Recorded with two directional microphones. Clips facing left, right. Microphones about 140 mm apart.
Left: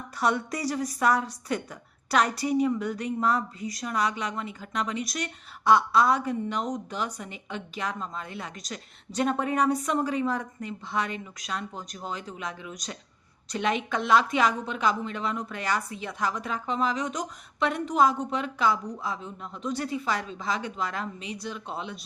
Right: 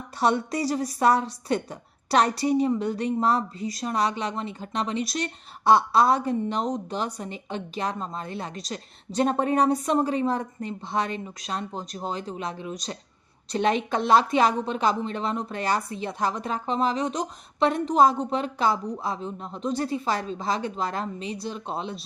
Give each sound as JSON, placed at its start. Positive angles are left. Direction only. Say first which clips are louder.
{"t": 0.2, "sound": "a woman's voice", "louder": "right 3 dB", "side_deg": -30}